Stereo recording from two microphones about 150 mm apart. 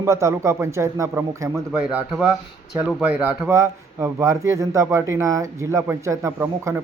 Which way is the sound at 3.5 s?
20° right (ahead or behind).